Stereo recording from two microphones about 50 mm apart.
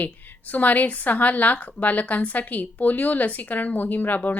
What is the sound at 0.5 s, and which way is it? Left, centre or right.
A woman's voice, left.